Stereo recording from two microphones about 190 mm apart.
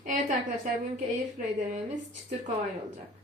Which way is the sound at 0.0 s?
40° right (ahead or behind).